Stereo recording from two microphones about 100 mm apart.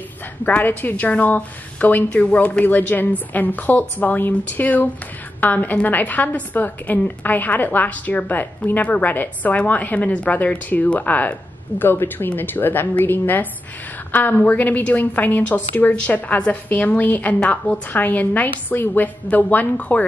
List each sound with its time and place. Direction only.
0.5 s a woman's voice: 15° left (ahead or behind)